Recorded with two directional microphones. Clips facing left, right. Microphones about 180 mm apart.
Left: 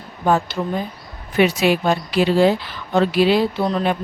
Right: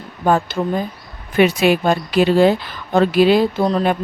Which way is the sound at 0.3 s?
50° right (ahead or behind).